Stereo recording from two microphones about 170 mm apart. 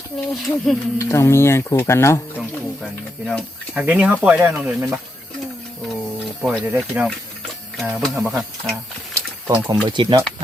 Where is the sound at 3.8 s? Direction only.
10° right (ahead or behind).